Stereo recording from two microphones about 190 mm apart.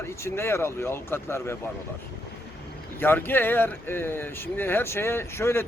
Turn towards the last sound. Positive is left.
turn(degrees=15)  # may be behind; listen again after turning